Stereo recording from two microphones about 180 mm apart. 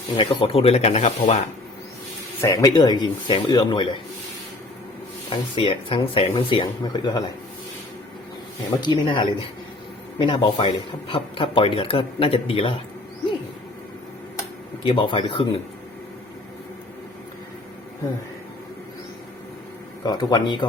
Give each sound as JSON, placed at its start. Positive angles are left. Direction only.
{"t": 0.2, "sound": "speech", "side_deg": 30}
{"t": 2.4, "sound": "speech", "side_deg": 20}
{"t": 5.3, "sound": "speech", "side_deg": 30}
{"t": 8.8, "sound": "speech", "side_deg": 25}
{"t": 14.8, "sound": "speech", "side_deg": 25}
{"t": 20.1, "sound": "speech", "side_deg": 25}